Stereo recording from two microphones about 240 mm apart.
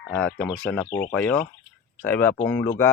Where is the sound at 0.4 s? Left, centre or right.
Centre.